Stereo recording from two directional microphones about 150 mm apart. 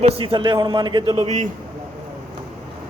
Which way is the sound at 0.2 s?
35° right (ahead or behind).